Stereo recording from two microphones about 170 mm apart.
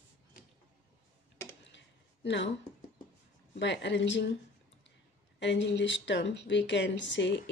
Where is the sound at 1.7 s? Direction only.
90° left.